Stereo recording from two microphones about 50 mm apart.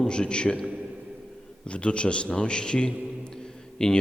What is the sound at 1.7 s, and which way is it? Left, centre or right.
A man's voice, left.